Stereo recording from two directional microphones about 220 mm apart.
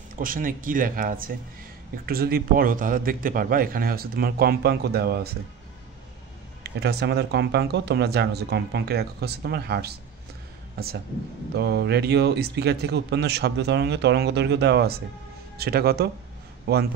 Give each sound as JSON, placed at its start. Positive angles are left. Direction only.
{"t": 0.1, "sound": "a man's voice", "side_deg": -40}
{"t": 6.6, "sound": "a man's voice", "side_deg": -50}
{"t": 11.5, "sound": "a man's voice", "side_deg": -50}